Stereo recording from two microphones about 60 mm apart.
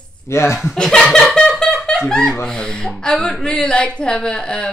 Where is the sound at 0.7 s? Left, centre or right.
Centre.